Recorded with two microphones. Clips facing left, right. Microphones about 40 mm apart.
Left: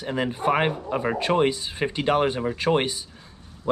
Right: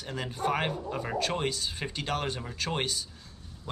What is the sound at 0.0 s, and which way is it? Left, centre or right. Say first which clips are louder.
Speech: left 7 dB; left.